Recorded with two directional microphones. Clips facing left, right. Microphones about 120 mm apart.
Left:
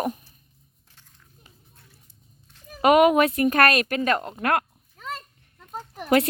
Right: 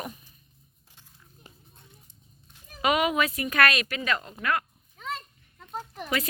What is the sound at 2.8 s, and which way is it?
Speech, 50° left (ahead or behind).